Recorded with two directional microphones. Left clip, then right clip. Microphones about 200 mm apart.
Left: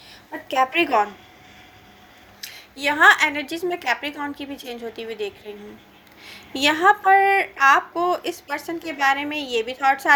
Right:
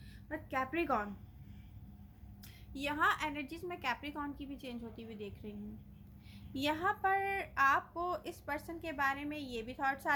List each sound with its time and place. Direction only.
0.4 s a woman's voice: 25° left (ahead or behind)
2.4 s a woman's voice: 25° left (ahead or behind)